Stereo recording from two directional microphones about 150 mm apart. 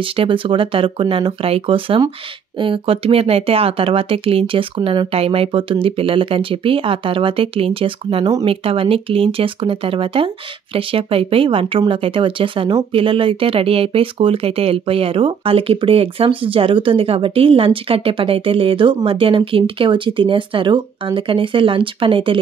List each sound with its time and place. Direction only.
0.1 s speech: 35° right (ahead or behind)